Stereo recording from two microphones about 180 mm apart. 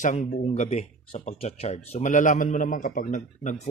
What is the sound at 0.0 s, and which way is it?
Speech, 45° left (ahead or behind).